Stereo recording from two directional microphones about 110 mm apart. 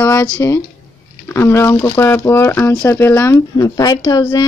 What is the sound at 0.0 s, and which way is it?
Speech, 25° left (ahead or behind).